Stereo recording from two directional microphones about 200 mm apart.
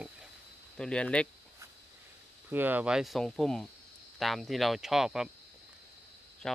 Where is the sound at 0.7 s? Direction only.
5° left (ahead or behind).